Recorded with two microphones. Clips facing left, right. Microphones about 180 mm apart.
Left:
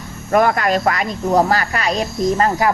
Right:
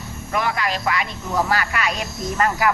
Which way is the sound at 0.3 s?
50° left (ahead or behind).